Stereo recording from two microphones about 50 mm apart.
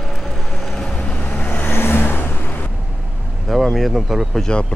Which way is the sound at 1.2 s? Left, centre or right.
Left.